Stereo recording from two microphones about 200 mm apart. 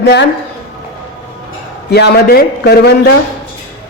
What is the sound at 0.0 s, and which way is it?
Speech, 60° left (ahead or behind).